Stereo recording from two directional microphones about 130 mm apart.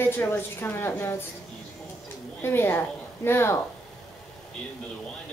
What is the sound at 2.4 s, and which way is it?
A woman's voice, 20° left (ahead or behind).